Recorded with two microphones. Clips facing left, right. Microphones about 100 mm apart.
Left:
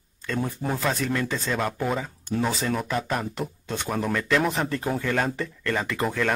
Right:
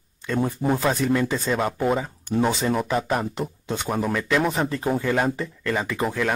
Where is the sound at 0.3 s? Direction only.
10° right (ahead or behind).